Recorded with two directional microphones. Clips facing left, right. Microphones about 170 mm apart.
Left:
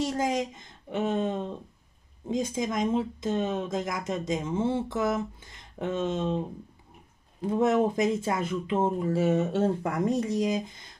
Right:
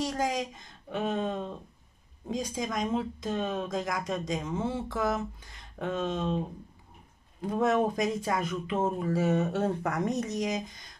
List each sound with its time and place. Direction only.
0.0 s speech: 25° left (ahead or behind)
7.4 s speech: 25° left (ahead or behind)